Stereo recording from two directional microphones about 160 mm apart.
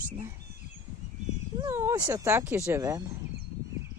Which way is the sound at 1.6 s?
15° right (ahead or behind).